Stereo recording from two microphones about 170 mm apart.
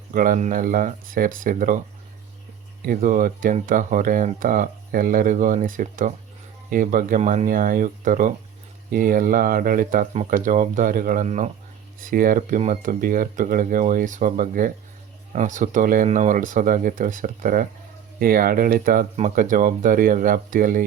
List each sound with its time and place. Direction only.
0.1 s speech: 55° right (ahead or behind)
2.8 s speech: 55° right (ahead or behind)
12.0 s speech: 55° right (ahead or behind)